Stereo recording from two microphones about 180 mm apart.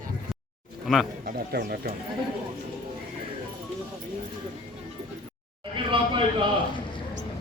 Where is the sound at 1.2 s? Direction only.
55° right (ahead or behind).